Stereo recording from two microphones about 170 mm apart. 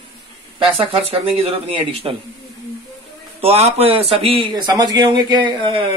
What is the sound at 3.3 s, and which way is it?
Speech, 35° right (ahead or behind).